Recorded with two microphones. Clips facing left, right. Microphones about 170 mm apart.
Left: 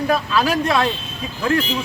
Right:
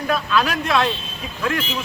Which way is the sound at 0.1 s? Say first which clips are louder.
Even; 35° left (ahead or behind).